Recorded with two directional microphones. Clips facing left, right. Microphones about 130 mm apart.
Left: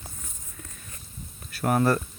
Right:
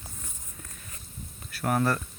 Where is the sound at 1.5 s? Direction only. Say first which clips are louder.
Left 4 dB; 5° left (ahead or behind).